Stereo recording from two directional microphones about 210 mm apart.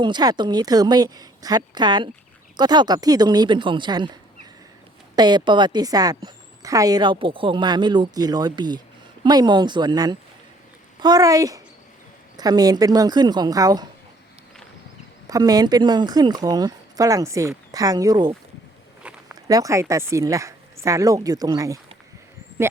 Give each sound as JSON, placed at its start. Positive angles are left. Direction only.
{"t": 0.0, "sound": "a woman's voice", "side_deg": -20}
{"t": 15.3, "sound": "a woman's voice", "side_deg": -20}